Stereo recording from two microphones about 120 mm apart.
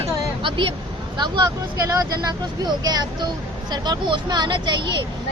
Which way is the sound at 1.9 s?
35° right (ahead or behind).